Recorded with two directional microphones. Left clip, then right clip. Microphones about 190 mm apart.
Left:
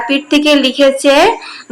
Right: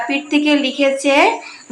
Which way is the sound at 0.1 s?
25° left (ahead or behind).